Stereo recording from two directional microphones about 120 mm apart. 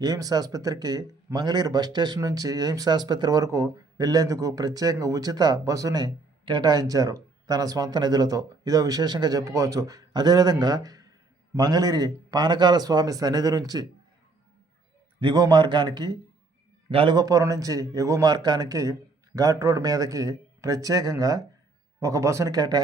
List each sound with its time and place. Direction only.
0.0 s speech: 35° right (ahead or behind)
15.2 s speech: 35° right (ahead or behind)
16.9 s a man's voice: 50° right (ahead or behind)
17.2 s a man's voice: 30° right (ahead or behind)